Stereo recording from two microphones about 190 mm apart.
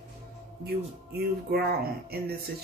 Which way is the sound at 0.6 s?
55° right (ahead or behind).